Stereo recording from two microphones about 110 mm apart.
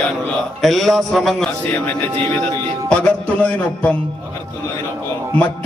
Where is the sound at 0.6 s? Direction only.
Centre (ahead or behind).